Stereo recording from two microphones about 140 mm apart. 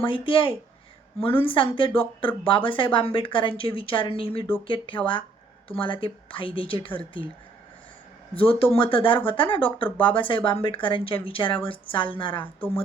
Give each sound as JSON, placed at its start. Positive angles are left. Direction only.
{"t": 0.0, "sound": "speech", "side_deg": 40}
{"t": 8.4, "sound": "speech", "side_deg": 40}